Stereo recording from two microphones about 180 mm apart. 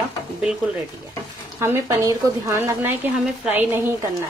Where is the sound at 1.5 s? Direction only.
15° right (ahead or behind).